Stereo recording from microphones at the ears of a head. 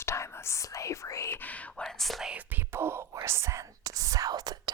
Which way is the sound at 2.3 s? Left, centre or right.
Right.